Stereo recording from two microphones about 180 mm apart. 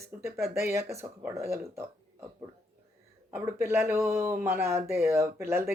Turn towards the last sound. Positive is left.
turn(degrees=-15)  # may be behind; listen again after turning